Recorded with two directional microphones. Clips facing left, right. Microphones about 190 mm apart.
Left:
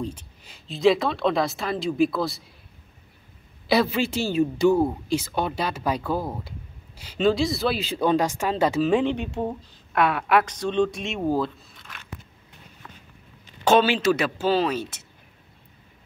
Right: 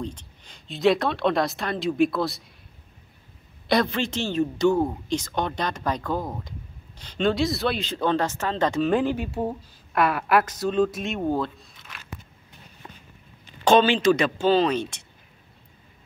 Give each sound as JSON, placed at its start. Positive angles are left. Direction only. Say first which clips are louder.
{"t": 0.0, "sound": "speech", "louder": "left 2 dB", "side_deg": 10}
{"t": 3.6, "sound": "speech", "louder": "left 1 dB", "side_deg": 5}
{"t": 12.8, "sound": "a sound", "louder": "right 2 dB", "side_deg": -20}
{"t": 13.7, "sound": "speech", "louder": "right 1 dB", "side_deg": 5}